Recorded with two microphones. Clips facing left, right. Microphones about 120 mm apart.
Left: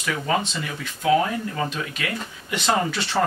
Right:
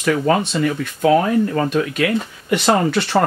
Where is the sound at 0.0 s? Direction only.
55° right (ahead or behind).